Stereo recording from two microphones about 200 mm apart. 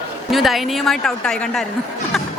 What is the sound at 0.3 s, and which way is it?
Speech, centre (ahead or behind).